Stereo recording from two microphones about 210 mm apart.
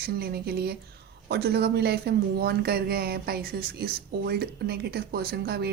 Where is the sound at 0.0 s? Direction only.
45° right (ahead or behind).